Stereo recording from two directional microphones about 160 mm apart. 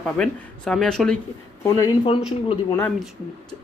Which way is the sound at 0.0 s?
5° left (ahead or behind).